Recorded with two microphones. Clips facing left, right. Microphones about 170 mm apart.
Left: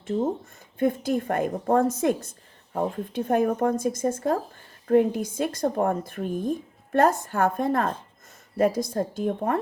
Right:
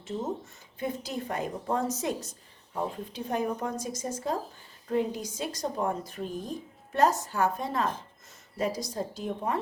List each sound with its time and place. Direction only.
0.8 s a woman's voice: 55° left (ahead or behind)